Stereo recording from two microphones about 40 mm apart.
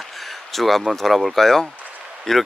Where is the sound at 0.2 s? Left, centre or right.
Centre.